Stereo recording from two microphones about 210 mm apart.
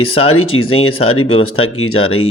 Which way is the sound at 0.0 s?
25° left (ahead or behind).